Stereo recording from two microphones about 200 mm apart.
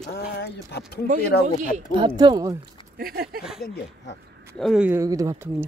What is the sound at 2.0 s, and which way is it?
Speech, 25° right (ahead or behind).